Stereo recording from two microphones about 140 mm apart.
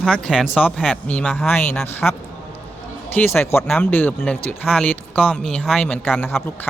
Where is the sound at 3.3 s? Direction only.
15° left (ahead or behind).